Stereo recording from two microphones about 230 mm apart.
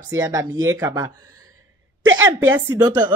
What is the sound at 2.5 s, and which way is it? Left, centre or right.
Speech, centre.